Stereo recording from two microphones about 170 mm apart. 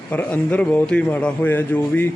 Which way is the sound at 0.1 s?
10° left (ahead or behind).